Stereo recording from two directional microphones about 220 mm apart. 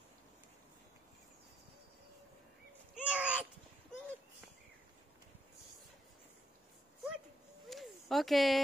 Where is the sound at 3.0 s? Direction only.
5° right (ahead or behind).